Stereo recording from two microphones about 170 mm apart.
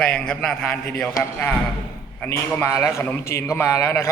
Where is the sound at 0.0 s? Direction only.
5° left (ahead or behind).